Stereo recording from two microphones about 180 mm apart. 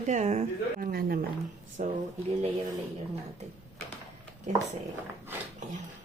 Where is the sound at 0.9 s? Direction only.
55° right (ahead or behind).